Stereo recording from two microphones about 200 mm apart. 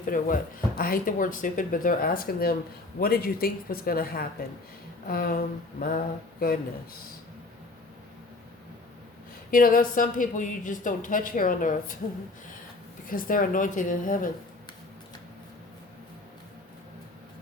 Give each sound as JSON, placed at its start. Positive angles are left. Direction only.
{"t": 0.0, "sound": "speech", "side_deg": 45}
{"t": 9.5, "sound": "speech", "side_deg": 45}
{"t": 13.1, "sound": "speech", "side_deg": 45}